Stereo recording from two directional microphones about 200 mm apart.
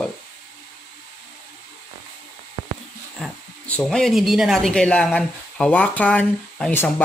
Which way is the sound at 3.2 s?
5° left (ahead or behind).